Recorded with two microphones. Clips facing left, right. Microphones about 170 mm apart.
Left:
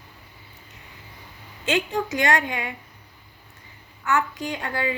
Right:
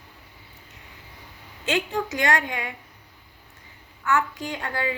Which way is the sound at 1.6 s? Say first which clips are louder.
Left 1 dB; 20° left (ahead or behind).